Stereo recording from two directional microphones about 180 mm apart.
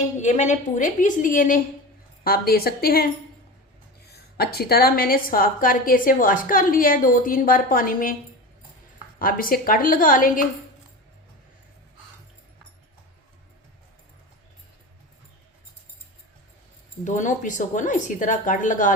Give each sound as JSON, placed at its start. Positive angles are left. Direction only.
{"t": 0.2, "sound": "a woman's voice", "side_deg": 40}
{"t": 4.1, "sound": "a woman's voice", "side_deg": 60}
{"t": 9.1, "sound": "a woman's voice", "side_deg": 55}
{"t": 17.0, "sound": "a woman's voice", "side_deg": 45}